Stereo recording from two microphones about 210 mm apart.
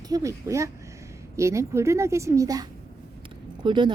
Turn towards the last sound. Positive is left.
turn(degrees=-20)  # may be behind; listen again after turning